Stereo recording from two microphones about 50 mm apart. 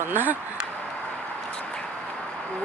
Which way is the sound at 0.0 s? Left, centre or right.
Right.